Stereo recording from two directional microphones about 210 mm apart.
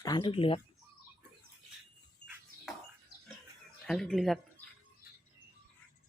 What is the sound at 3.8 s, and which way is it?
Speech, centre (ahead or behind).